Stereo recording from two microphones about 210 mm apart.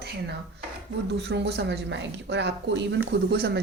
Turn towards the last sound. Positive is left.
turn(degrees=-50)  # may be behind; listen again after turning